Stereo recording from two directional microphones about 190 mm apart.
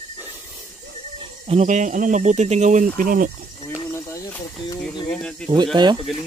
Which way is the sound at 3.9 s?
15° left (ahead or behind).